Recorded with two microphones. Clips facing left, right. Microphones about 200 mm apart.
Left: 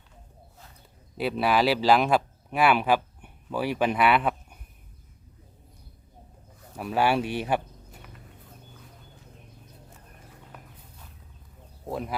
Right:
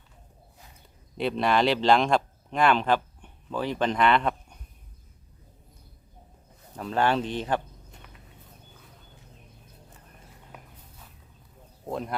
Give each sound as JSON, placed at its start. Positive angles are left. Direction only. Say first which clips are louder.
{"t": 1.1, "sound": "speech", "louder": "even", "side_deg": 5}
{"t": 6.7, "sound": "speech", "louder": "left 1 dB", "side_deg": 10}
{"t": 11.9, "sound": "speech", "louder": "even", "side_deg": 5}